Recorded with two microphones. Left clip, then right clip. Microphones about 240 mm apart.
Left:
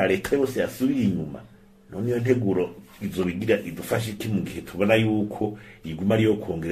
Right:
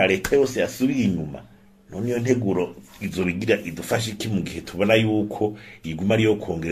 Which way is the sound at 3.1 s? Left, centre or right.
Right.